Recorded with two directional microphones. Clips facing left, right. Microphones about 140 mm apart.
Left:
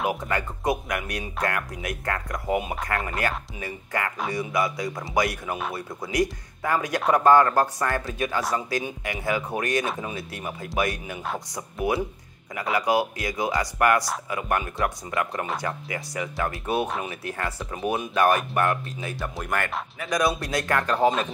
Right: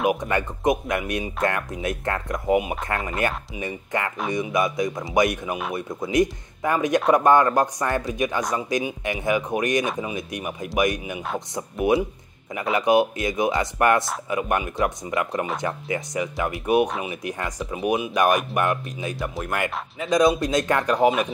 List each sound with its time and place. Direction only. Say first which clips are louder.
0.0 s speech: right 4 dB; 20° right (ahead or behind)
19.3 s speech: right 1 dB; centre (ahead or behind)
20.0 s speech: right 6 dB; 20° right (ahead or behind)